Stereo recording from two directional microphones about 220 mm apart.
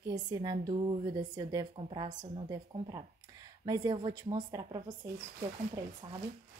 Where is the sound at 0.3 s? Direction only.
20° right (ahead or behind).